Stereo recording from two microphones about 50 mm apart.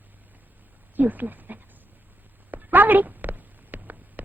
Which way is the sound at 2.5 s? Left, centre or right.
Right.